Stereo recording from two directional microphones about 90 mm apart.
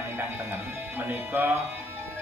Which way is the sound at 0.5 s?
25° right (ahead or behind).